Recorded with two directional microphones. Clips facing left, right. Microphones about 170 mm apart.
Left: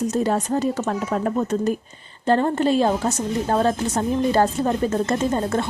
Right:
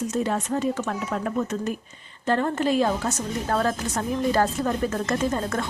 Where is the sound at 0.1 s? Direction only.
40° left (ahead or behind).